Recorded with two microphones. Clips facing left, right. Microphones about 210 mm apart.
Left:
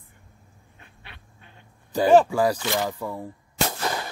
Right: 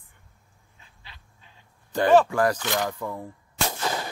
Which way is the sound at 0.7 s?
60° left (ahead or behind).